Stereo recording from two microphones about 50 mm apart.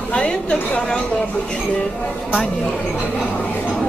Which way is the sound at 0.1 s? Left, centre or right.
Centre.